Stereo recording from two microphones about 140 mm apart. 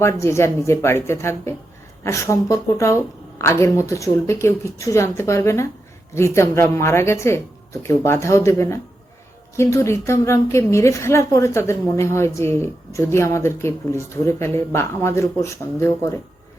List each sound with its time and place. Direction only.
0.0 s a woman's voice: 20° left (ahead or behind)